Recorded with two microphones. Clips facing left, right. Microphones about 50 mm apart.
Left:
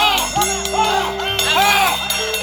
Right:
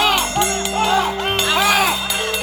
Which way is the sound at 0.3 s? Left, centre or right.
Centre.